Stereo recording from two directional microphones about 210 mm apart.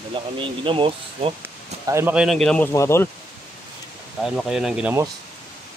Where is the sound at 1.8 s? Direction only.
10° right (ahead or behind); by 3.0 s 15° left (ahead or behind).